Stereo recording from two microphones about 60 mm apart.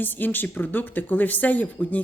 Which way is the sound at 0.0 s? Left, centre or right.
Left.